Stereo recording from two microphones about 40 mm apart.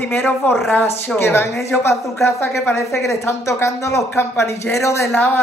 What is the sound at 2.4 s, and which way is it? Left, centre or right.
Speech, left.